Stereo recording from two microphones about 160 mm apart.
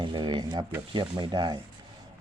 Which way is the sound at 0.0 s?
30° right (ahead or behind).